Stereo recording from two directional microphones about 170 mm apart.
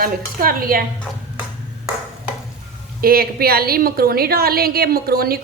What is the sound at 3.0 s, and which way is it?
A woman's voice, 60° right (ahead or behind).